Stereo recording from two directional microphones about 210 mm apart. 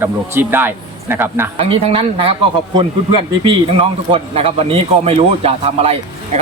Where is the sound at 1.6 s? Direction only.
25° right (ahead or behind).